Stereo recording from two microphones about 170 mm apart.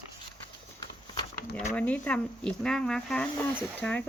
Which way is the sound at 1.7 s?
10° left (ahead or behind).